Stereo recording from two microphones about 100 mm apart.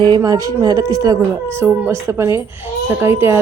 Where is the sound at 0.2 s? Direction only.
35° right (ahead or behind).